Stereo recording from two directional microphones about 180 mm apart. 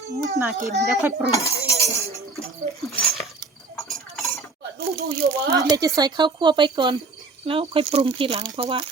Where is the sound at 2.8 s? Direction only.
Centre (ahead or behind).